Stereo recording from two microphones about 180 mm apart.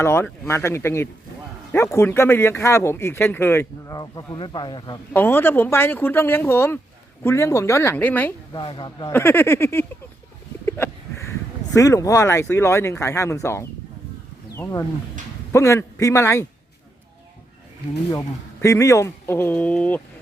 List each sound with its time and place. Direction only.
0.0 s speech: 15° left (ahead or behind)
5.1 s speech: 10° left (ahead or behind)
8.5 s a man's voice: 25° left (ahead or behind)
9.1 s speech: 10° left (ahead or behind)
11.3 s speech: 15° left (ahead or behind)
18.1 s speech: 15° left (ahead or behind)